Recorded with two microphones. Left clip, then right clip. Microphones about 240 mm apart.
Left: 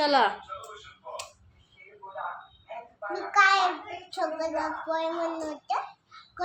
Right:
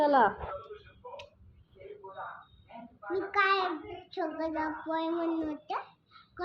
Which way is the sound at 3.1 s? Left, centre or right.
Centre.